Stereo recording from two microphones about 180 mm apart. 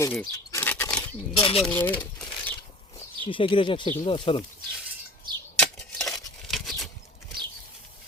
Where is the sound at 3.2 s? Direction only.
30° left (ahead or behind).